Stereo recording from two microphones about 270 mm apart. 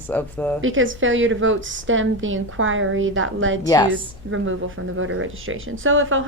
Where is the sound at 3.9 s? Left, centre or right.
Right.